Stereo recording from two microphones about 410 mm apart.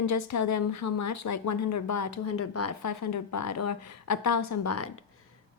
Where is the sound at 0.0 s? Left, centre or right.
Left.